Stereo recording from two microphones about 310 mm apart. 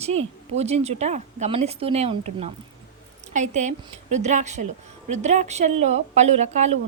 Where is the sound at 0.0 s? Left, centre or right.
Centre.